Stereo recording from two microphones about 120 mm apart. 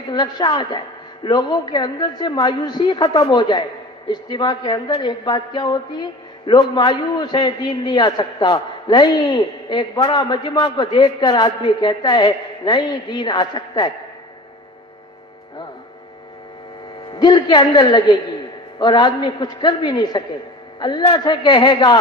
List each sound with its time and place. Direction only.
0.1 s a man's voice: 40° left (ahead or behind)
17.1 s a man's voice: 35° left (ahead or behind)